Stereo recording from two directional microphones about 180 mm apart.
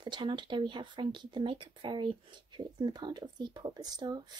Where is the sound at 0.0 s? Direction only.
25° right (ahead or behind).